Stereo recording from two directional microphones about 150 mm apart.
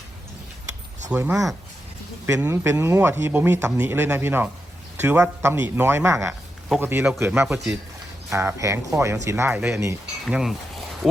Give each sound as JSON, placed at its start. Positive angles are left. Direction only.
{"t": 1.1, "sound": "speech", "side_deg": -10}
{"t": 8.3, "sound": "speech", "side_deg": -20}
{"t": 10.2, "sound": "speech", "side_deg": 0}
{"t": 11.0, "sound": "a sound", "side_deg": 0}